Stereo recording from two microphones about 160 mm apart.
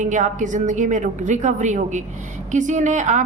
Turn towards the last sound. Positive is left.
turn(degrees=-50)  # may be behind; listen again after turning